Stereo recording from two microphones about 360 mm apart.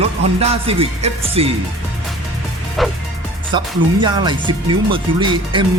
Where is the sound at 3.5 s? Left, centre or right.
Centre.